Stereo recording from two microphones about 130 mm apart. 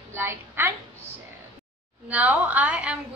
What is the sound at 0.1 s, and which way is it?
Speech, 15° right (ahead or behind).